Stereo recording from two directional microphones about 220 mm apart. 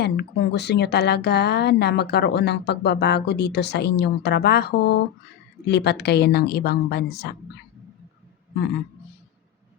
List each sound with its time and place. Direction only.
0.0 s speech: 50° left (ahead or behind)